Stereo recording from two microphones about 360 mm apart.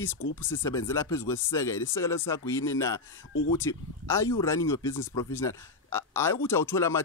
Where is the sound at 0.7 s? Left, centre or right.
Centre.